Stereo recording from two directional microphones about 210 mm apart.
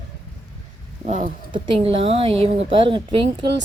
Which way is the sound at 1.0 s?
35° right (ahead or behind).